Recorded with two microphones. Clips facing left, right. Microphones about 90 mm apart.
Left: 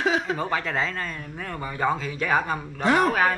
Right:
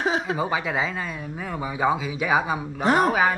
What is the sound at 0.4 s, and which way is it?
Speech, 10° right (ahead or behind).